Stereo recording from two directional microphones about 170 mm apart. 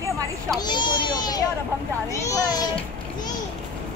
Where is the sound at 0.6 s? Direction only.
25° left (ahead or behind).